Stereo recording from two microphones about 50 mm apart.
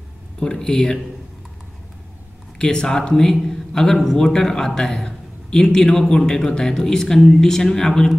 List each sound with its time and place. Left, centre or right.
0.4 s a man's voice: centre
2.6 s a man's voice: centre